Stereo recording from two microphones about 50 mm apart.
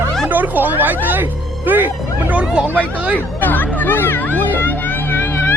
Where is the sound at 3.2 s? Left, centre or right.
Left.